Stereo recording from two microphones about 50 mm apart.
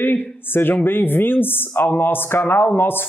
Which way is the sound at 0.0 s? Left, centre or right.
Left.